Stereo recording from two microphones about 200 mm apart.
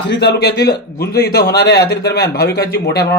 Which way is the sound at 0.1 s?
60° left (ahead or behind).